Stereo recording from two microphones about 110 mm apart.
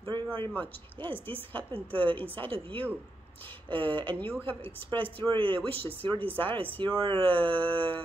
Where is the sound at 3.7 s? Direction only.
15° left (ahead or behind).